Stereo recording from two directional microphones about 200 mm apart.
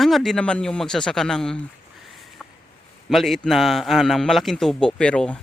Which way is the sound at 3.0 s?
Centre (ahead or behind).